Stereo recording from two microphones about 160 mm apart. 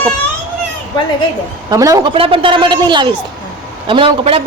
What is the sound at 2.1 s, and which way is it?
A woman's voice, 35° right (ahead or behind).